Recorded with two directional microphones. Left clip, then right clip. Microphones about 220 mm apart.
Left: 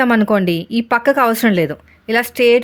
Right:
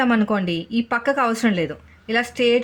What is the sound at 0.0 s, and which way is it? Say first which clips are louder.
Speech: left 6 dB; 45° left (ahead or behind).